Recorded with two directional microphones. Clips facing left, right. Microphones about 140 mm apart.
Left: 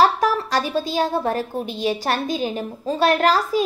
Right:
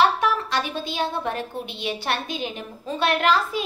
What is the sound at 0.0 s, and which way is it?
A woman's voice, 40° left (ahead or behind).